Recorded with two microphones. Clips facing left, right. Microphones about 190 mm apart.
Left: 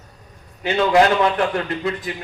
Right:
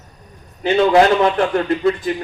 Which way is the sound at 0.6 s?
35° right (ahead or behind).